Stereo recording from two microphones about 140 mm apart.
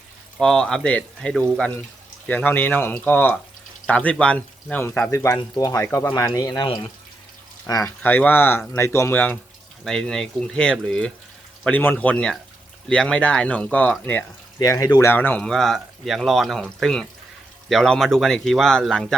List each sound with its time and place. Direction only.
0.3 s speech: 5° left (ahead or behind); by 6.7 s 25° left (ahead or behind)
7.7 s speech: 25° left (ahead or behind)
8.0 s speech: 15° left (ahead or behind)
14.6 s speech: 25° left (ahead or behind); by 19.0 s 5° left (ahead or behind)